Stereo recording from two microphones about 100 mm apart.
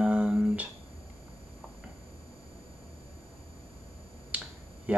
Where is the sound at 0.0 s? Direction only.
10° right (ahead or behind).